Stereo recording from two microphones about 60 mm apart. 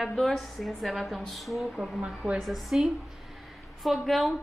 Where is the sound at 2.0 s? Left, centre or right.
Centre.